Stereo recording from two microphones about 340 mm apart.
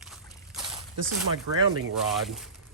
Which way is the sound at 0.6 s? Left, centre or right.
Centre.